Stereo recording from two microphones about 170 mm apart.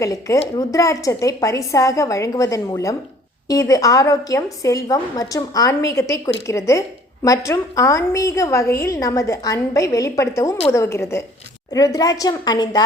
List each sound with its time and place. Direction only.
0.0 s a woman's voice: 20° left (ahead or behind)